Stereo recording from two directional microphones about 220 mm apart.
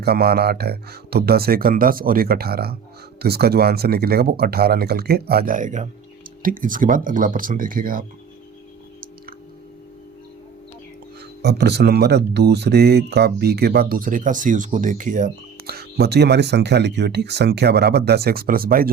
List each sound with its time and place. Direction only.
0.0 s speech: 45° right (ahead or behind)
11.4 s speech: 45° right (ahead or behind)